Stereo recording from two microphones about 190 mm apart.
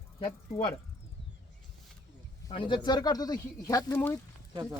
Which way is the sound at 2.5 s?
25° left (ahead or behind).